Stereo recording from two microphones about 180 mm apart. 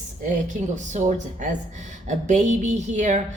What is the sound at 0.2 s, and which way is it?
A woman's voice, 45° right (ahead or behind).